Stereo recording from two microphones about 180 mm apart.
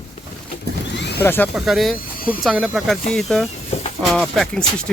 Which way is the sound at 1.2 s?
10° left (ahead or behind).